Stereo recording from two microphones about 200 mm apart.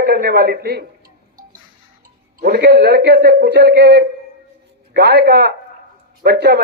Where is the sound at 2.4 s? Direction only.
50° right (ahead or behind).